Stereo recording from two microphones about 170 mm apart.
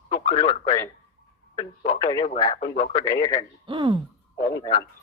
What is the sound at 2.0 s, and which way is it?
Speech, 25° left (ahead or behind).